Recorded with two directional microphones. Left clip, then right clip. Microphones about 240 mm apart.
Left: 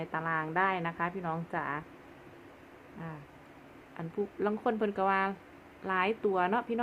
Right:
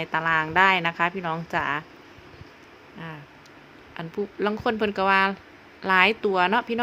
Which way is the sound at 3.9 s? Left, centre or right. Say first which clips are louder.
Right 6 dB; right.